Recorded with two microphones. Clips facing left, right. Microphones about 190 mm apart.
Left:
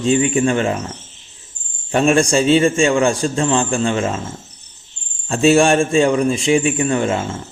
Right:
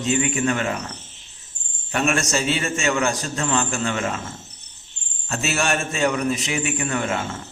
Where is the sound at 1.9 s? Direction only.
30° left (ahead or behind).